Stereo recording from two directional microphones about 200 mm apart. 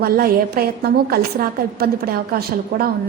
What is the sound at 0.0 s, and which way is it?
A woman's voice, 50° right (ahead or behind).